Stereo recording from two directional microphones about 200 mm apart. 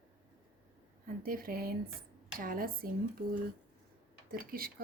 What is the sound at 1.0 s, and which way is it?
A woman's voice, 45° right (ahead or behind).